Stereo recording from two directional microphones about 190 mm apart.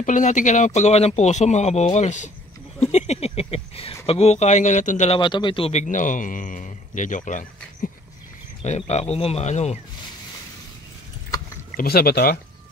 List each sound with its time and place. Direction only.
0.0 s a man's voice: 40° left (ahead or behind)
5.2 s a man's voice: 25° left (ahead or behind)
11.7 s speech: 55° left (ahead or behind)